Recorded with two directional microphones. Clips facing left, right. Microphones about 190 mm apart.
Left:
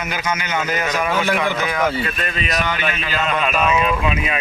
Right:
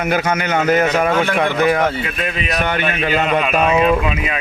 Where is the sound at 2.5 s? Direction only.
55° right (ahead or behind).